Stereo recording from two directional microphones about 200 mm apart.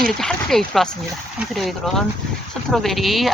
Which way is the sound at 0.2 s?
Centre (ahead or behind).